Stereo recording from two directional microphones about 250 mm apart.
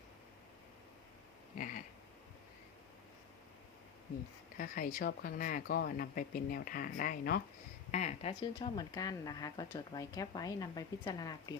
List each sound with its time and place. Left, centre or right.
1.5 s cat: left
4.5 s speech: left; by 11.5 s centre